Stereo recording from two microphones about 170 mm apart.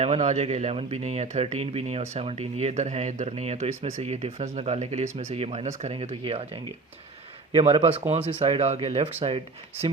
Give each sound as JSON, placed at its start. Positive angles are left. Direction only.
{"t": 0.0, "sound": "speech", "side_deg": -40}